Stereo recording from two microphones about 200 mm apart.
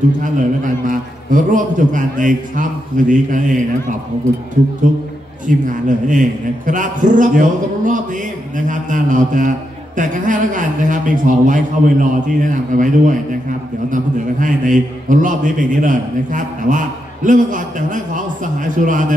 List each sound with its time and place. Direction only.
0.2 s a man's voice: 40° right (ahead or behind)
5.7 s a man's voice: 40° right (ahead or behind)